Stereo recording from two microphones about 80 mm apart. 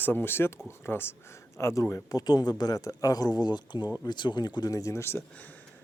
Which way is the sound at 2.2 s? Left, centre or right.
Left.